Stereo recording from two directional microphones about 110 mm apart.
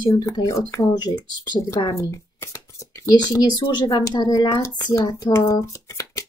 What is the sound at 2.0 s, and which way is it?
Speech, 25° left (ahead or behind).